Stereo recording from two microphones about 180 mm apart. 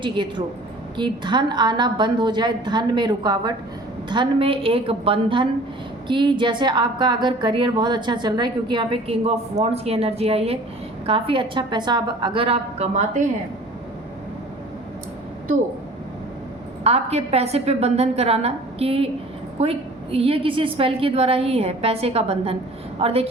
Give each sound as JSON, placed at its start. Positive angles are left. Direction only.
{"t": 0.0, "sound": "a woman's voice", "side_deg": -25}
{"t": 16.8, "sound": "a woman's voice", "side_deg": -35}